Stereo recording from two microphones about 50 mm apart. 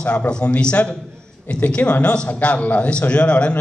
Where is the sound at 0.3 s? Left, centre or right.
Left.